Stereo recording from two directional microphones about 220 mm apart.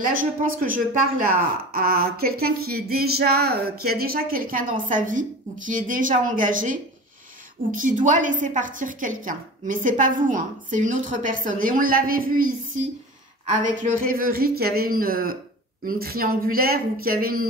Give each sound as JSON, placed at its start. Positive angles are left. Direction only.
{"t": 0.4, "sound": "a woman's voice", "side_deg": -40}
{"t": 1.7, "sound": "a sound", "side_deg": -40}
{"t": 5.7, "sound": "a woman's voice", "side_deg": -35}
{"t": 8.0, "sound": "a woman's voice", "side_deg": -35}
{"t": 13.5, "sound": "a woman's voice", "side_deg": -35}
{"t": 15.8, "sound": "a sound", "side_deg": -40}